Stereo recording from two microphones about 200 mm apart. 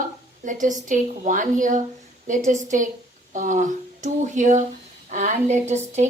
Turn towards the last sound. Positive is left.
turn(degrees=-35)  # may be behind; listen again after turning